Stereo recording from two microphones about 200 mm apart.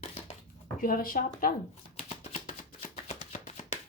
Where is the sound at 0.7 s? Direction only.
45° left (ahead or behind).